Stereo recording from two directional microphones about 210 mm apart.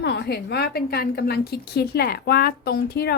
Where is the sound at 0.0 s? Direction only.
55° left (ahead or behind).